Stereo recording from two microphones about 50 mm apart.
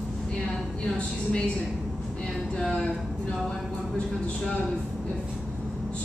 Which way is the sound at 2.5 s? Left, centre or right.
Centre.